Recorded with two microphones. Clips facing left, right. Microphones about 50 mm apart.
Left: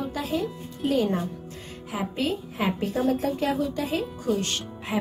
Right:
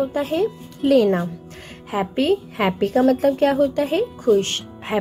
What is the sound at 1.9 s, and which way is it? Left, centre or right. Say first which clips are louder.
A woman's voice: right 8 dB; right.